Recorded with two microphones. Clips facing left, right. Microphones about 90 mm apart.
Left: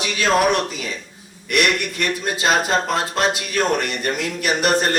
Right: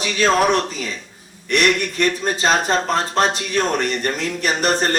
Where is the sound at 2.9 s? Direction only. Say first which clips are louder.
Right 2 dB; 35° right (ahead or behind).